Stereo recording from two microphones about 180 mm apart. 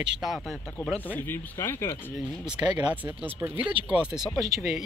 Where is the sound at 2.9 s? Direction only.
10° right (ahead or behind).